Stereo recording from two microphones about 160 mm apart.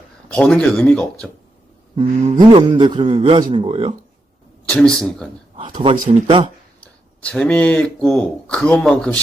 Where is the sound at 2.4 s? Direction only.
30° right (ahead or behind).